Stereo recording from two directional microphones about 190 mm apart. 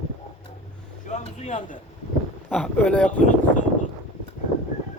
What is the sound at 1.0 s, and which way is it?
Vehicle, 35° left (ahead or behind).